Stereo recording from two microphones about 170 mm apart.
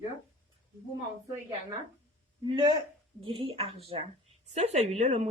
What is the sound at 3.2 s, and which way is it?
Speech, 30° right (ahead or behind).